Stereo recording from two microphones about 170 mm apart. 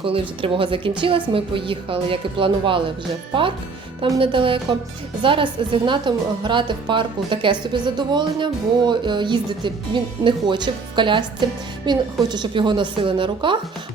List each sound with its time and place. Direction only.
0.0 s a woman's voice: 30° right (ahead or behind)
4.2 s a woman's voice: 30° right (ahead or behind)